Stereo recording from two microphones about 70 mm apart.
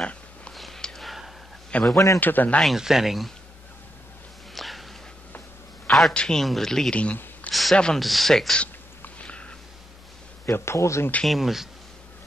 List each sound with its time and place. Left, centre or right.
0.5 s a sound: centre
1.7 s a man's voice: centre
2.6 s speech: centre
4.6 s a sound: centre
5.9 s a man's voice: centre
8.0 s speech: centre
9.0 s a sound: centre
10.4 s a man's voice: left
11.2 s speech: centre